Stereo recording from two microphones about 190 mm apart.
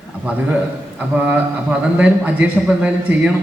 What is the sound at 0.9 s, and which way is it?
A man's voice, 10° right (ahead or behind).